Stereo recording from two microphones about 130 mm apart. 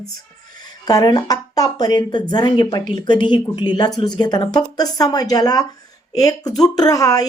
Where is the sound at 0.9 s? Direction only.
30° left (ahead or behind).